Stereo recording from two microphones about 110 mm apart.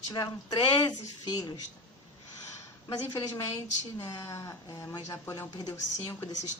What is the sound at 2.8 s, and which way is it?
Speech, 30° left (ahead or behind).